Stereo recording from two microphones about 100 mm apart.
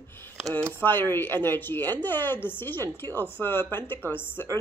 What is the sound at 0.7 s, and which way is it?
Speech, 20° left (ahead or behind).